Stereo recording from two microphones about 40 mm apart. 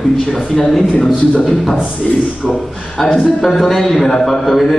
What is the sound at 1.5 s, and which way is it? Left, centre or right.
Speech, centre.